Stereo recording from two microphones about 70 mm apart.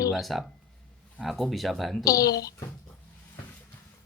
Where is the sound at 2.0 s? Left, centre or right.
Left.